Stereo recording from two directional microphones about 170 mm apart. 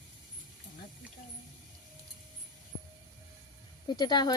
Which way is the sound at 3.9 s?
25° left (ahead or behind).